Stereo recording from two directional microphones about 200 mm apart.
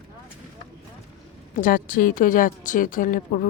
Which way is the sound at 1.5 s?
40° left (ahead or behind).